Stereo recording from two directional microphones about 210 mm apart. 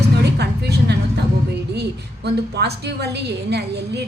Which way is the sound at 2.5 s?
50° right (ahead or behind).